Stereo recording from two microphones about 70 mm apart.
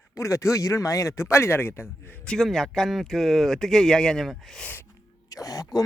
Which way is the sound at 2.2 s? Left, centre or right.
Centre.